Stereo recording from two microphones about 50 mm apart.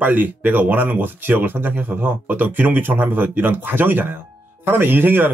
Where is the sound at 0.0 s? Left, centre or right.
Right.